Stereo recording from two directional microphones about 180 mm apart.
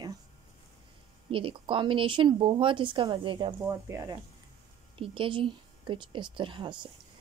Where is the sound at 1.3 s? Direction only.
30° right (ahead or behind).